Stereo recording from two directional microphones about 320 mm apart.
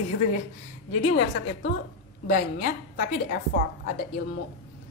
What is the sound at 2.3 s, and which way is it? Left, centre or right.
Speech, left.